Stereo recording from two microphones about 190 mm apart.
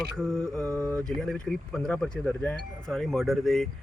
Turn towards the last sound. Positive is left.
turn(degrees=0)  # may be behind; listen again after turning